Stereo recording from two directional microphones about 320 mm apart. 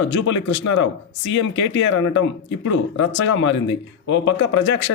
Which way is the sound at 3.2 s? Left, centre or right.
Left.